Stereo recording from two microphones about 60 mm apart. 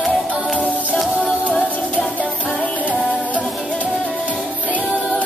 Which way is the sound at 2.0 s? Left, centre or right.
Left.